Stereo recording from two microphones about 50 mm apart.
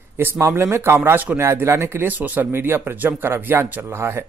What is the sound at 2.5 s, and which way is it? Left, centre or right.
Speech, right.